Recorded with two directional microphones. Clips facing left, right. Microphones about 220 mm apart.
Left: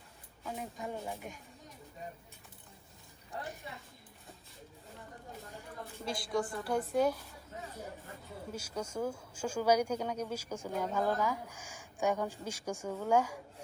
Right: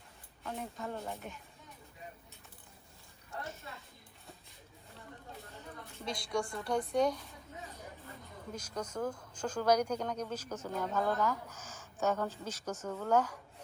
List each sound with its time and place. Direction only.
0.4 s speech: 10° left (ahead or behind)
3.4 s speech: 15° left (ahead or behind)
6.1 s a woman's voice: 5° left (ahead or behind)
8.5 s speech: 10° left (ahead or behind)